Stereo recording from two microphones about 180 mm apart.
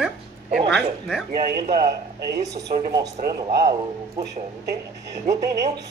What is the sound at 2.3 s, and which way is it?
Speech, 20° right (ahead or behind).